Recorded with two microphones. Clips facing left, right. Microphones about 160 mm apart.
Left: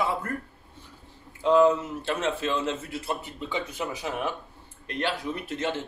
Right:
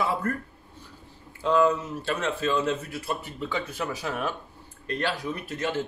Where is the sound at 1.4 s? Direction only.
20° left (ahead or behind).